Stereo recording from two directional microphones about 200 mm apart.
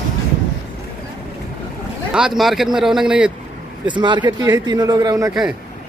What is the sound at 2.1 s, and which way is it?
A man's voice, 5° right (ahead or behind).